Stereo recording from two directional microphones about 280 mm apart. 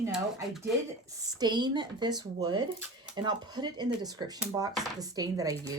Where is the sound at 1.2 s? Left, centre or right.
Centre.